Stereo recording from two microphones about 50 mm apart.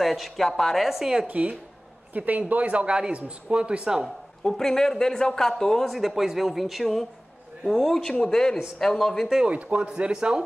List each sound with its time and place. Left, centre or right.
0.0 s speech: centre
1.2 s speech: right
4.4 s speech: centre
5.9 s speech: centre
9.4 s speech: right